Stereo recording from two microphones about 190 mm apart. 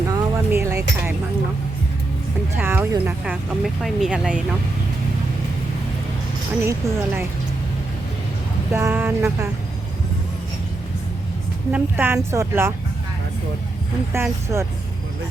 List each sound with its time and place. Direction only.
0.1 s a sound: 15° right (ahead or behind)
2.6 s speech: 10° right (ahead or behind)
6.7 s speech: 15° right (ahead or behind)
8.7 s speech: 10° right (ahead or behind)
11.7 s speech: 10° right (ahead or behind)
14.1 s speech: 15° right (ahead or behind)